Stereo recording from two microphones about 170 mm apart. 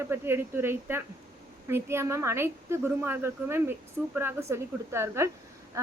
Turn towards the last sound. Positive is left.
turn(degrees=-15)  # may be behind; listen again after turning